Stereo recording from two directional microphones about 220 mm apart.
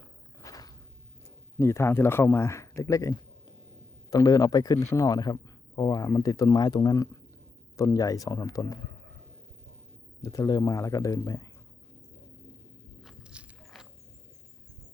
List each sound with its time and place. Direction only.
0.4 s a sound: 15° left (ahead or behind)
1.5 s a man's voice: 10° left (ahead or behind)
10.2 s a man's voice: 15° left (ahead or behind)
13.0 s walk: centre (ahead or behind)